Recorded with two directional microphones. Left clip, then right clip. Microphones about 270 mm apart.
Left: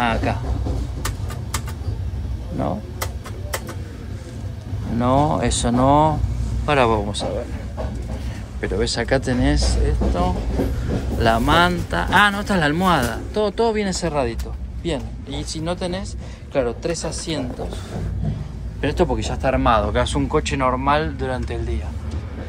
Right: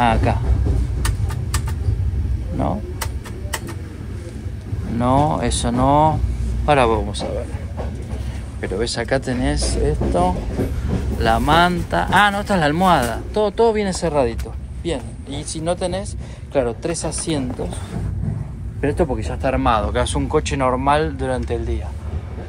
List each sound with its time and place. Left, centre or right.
0.0 s speech: centre
4.9 s speech: centre
8.5 s speech: centre
9.8 s speech: centre
18.8 s speech: centre